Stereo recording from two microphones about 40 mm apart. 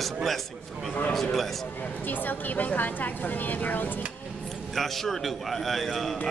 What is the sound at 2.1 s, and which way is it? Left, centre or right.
A woman's voice, left.